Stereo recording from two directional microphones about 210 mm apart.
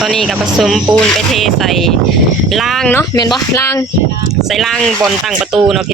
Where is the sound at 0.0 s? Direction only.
Centre (ahead or behind).